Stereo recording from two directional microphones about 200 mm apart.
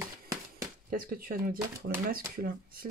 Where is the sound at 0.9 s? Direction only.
45° right (ahead or behind).